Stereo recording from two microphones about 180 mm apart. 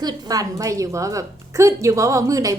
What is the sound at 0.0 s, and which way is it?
A woman's voice, 20° right (ahead or behind).